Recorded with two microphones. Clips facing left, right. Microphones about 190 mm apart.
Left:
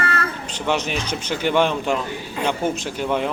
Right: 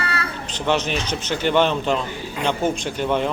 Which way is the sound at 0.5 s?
10° left (ahead or behind).